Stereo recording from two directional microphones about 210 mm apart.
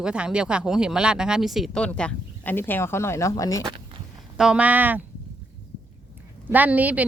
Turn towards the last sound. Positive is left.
turn(degrees=-5)  # may be behind; listen again after turning